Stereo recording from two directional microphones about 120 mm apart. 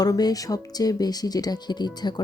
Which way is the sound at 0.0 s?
35° left (ahead or behind).